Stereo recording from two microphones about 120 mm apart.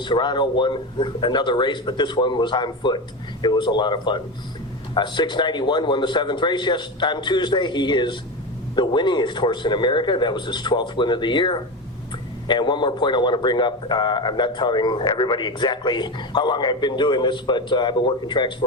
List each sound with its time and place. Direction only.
0.0 s a man's voice: 40° left (ahead or behind)